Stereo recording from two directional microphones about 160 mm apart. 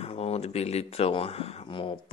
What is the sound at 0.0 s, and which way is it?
Speech, 40° left (ahead or behind).